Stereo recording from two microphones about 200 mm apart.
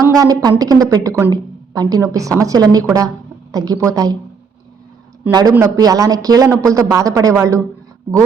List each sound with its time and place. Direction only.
0.0 s a woman's voice: 15° right (ahead or behind)
5.3 s a woman's voice: 20° right (ahead or behind)